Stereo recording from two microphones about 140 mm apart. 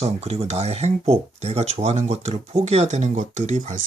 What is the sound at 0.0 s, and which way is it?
Speech, 50° right (ahead or behind).